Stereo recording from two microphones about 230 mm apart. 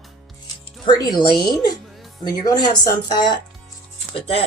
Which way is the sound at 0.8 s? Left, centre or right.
Centre.